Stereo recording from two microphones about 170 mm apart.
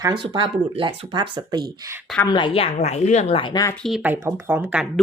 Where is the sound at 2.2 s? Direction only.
30° left (ahead or behind).